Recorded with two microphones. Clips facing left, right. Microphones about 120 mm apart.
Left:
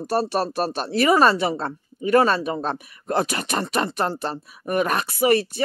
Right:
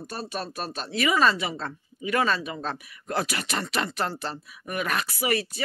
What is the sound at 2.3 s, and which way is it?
Speech, 50° left (ahead or behind).